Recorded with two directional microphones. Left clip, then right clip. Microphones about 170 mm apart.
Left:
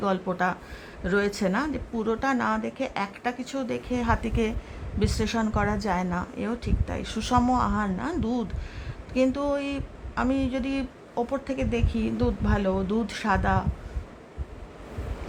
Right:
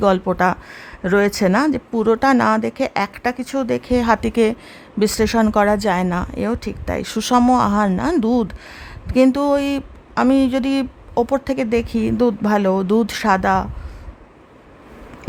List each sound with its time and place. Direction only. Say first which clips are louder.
0.0 s a woman's voice: right 10 dB; 55° right (ahead or behind)